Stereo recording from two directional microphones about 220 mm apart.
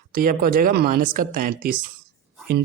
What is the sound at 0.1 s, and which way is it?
Speech, 40° right (ahead or behind).